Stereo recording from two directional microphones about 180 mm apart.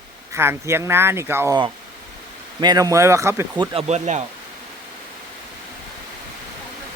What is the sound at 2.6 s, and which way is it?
Speech, 20° right (ahead or behind).